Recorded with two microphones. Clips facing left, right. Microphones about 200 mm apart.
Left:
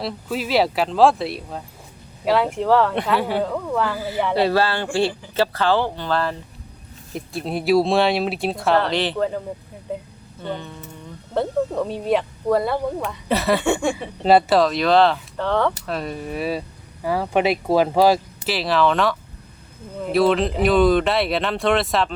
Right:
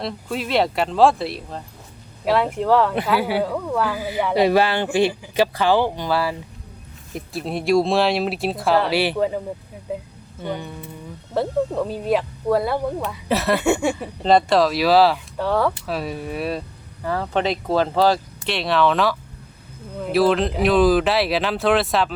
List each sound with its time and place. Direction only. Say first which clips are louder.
0.0 s speech: left 1 dB; 5° left (ahead or behind)
10.4 s speech: right 1 dB; 10° right (ahead or behind)